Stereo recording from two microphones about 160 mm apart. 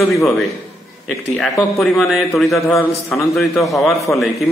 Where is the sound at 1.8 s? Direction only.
Centre (ahead or behind).